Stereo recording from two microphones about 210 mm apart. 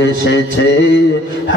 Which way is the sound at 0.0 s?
55° left (ahead or behind).